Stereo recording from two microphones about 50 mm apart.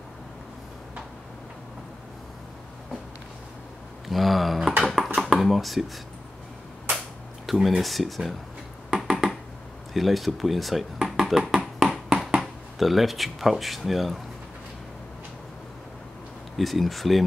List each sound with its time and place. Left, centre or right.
4.1 s a sound: centre
4.9 s computer keyboard: centre
7.4 s speech: centre
8.9 s finger snapping: centre
9.9 s speech: centre
11.1 s a sound: centre
12.3 s speech: centre
16.5 s speech: centre